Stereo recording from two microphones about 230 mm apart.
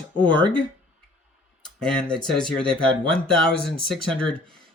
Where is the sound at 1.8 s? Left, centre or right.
Centre.